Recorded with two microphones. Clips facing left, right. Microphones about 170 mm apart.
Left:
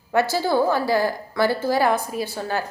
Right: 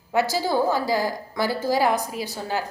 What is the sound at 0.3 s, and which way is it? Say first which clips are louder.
A woman's voice: left 2 dB; 15° right (ahead or behind).